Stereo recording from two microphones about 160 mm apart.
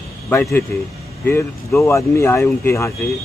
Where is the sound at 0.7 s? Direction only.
15° left (ahead or behind).